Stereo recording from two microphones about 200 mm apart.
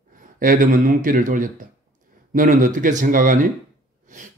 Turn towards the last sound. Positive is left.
turn(degrees=-40)  # may be behind; listen again after turning